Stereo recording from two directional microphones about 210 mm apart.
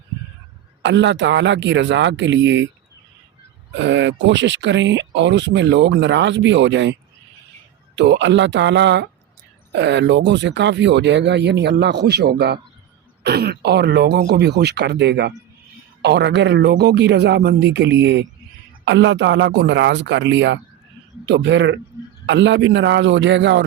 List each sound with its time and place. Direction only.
0.8 s speech: 60° right (ahead or behind)
3.8 s speech: 60° right (ahead or behind)
7.9 s speech: 55° right (ahead or behind)